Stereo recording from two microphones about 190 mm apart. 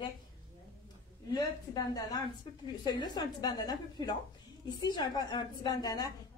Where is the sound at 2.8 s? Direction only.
20° left (ahead or behind).